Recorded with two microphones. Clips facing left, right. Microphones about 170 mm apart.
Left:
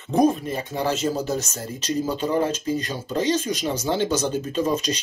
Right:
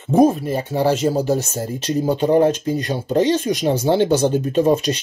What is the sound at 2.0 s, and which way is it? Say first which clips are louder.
Speech: right 9 dB; 55° right (ahead or behind).